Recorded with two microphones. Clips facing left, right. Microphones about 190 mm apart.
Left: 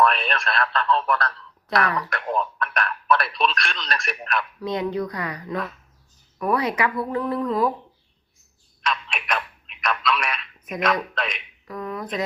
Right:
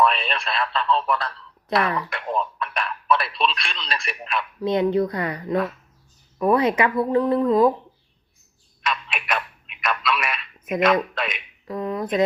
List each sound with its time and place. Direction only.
0.0 s a man's voice: centre (ahead or behind)
4.6 s speech: 25° right (ahead or behind)
8.8 s telephone: 5° right (ahead or behind)
11.1 s speech: 5° right (ahead or behind)
11.7 s a sound: 25° right (ahead or behind)